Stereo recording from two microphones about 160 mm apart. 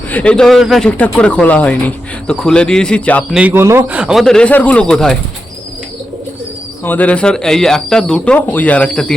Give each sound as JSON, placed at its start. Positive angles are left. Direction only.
{"t": 0.1, "sound": "speech", "side_deg": 10}
{"t": 3.3, "sound": "speech", "side_deg": -10}
{"t": 6.8, "sound": "speech", "side_deg": 10}